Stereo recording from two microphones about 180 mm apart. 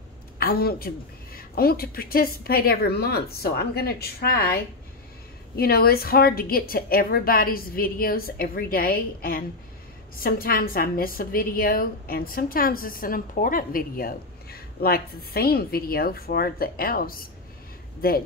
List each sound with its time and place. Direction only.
0.4 s a woman's voice: 60° left (ahead or behind)